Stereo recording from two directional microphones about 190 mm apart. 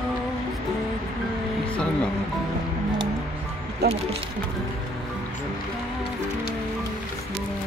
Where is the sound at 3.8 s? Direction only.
60° right (ahead or behind).